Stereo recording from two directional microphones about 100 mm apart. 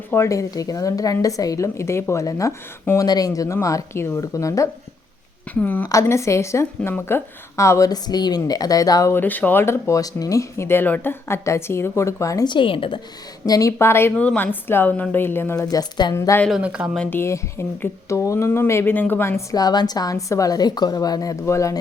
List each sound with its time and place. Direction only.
0.1 s speech: 30° left (ahead or behind)
5.5 s speech: 20° left (ahead or behind)
5.9 s speech: 30° left (ahead or behind)
9.1 s speech: 20° left (ahead or behind); by 12.5 s 35° left (ahead or behind)
12.5 s a woman's voice: 55° left (ahead or behind)
13.4 s speech: 35° left (ahead or behind)
15.5 s speech: 40° left (ahead or behind)
16.1 s speech: 30° left (ahead or behind)
16.5 s speech: 10° right (ahead or behind)
17.1 s speech: 25° left (ahead or behind)
19.5 s speech: 40° left (ahead or behind)